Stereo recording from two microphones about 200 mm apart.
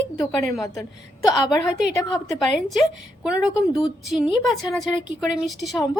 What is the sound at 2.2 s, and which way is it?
A woman's voice, centre (ahead or behind).